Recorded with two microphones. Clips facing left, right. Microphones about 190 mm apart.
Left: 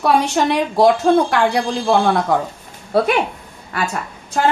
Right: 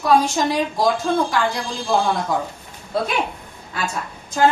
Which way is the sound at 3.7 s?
70° left (ahead or behind).